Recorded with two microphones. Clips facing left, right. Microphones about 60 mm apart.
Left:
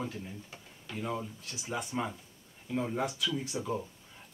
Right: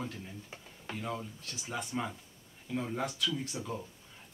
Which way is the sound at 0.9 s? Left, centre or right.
Centre.